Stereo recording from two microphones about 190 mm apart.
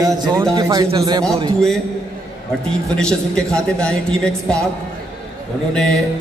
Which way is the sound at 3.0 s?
5° left (ahead or behind).